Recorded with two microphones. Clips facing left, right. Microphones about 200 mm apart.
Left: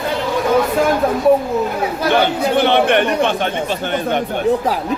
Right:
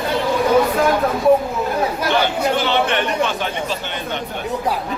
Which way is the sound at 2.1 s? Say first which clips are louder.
Left 5 dB; 55° left (ahead or behind).